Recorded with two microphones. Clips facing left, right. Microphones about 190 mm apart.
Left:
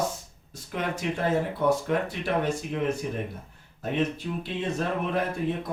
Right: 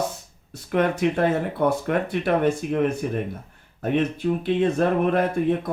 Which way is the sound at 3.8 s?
60° right (ahead or behind).